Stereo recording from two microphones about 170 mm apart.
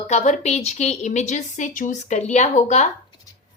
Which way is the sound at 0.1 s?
40° left (ahead or behind).